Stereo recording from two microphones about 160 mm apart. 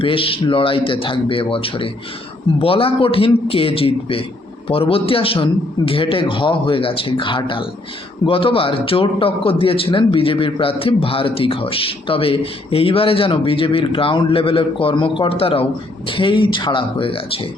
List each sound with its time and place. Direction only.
0.0 s a man's voice: 35° left (ahead or behind)